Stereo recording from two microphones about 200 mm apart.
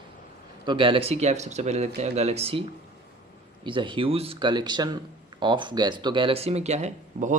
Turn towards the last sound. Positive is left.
turn(degrees=-35)  # may be behind; listen again after turning